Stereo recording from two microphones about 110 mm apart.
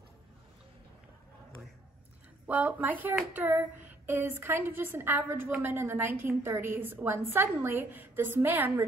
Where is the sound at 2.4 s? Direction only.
15° right (ahead or behind).